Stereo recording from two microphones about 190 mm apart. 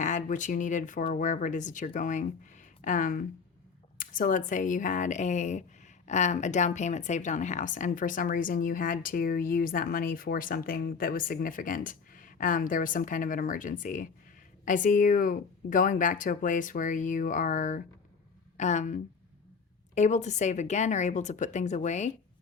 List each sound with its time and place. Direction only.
0.0 s speech: 40° left (ahead or behind)